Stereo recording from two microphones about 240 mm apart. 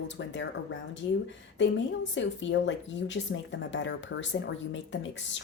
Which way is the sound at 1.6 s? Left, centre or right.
Left.